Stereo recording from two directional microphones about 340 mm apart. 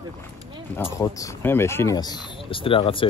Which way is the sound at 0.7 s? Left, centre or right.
Centre.